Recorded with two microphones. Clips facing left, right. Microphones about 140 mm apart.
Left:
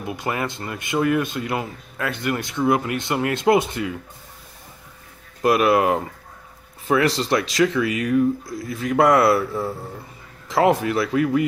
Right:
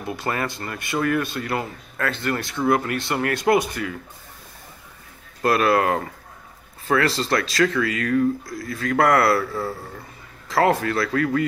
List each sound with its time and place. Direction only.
0.0 s speech: 15° left (ahead or behind)
5.4 s speech: 15° left (ahead or behind)